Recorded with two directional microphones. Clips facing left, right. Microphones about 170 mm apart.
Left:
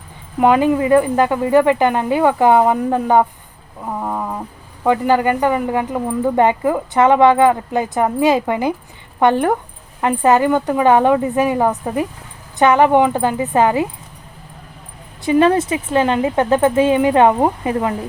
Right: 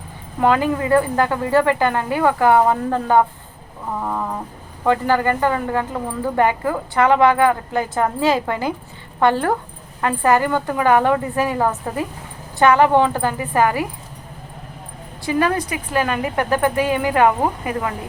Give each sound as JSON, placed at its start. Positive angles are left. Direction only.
{"t": 0.3, "sound": "speech", "side_deg": 15}
{"t": 4.0, "sound": "a sound", "side_deg": 10}
{"t": 4.8, "sound": "a woman's voice", "side_deg": 15}
{"t": 15.2, "sound": "speech", "side_deg": 25}